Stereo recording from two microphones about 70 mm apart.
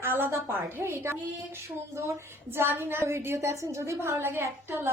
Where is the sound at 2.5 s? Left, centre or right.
Right.